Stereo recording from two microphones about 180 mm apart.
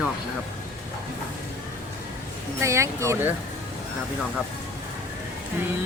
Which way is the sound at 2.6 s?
15° right (ahead or behind).